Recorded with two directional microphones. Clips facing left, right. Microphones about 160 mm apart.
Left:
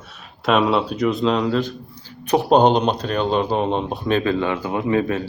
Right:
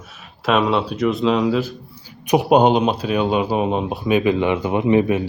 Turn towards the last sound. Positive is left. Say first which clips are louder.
# right 4 dB
turn(degrees=-15)  # may be behind; listen again after turning